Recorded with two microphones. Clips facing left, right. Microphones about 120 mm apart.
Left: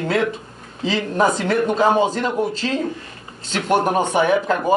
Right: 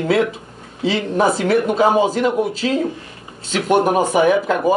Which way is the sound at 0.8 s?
5° right (ahead or behind).